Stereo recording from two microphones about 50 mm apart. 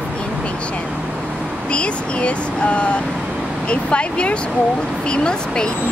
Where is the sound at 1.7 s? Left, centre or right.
Left.